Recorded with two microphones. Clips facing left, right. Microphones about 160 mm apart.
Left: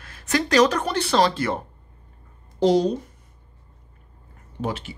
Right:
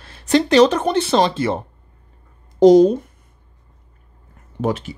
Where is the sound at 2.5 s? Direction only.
45° right (ahead or behind).